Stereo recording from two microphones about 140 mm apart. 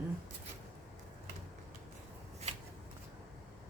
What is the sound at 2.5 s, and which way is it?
Shuffling cards, 50° right (ahead or behind).